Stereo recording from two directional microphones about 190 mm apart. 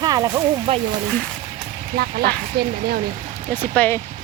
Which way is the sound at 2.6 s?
55° right (ahead or behind).